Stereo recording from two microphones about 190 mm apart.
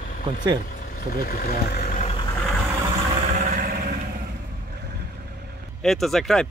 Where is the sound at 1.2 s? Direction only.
55° left (ahead or behind).